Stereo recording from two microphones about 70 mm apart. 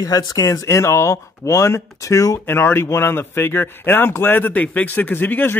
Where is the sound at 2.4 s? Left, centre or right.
Left.